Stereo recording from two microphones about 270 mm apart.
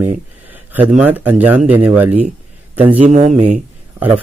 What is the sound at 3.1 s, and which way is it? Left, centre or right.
Speech, right.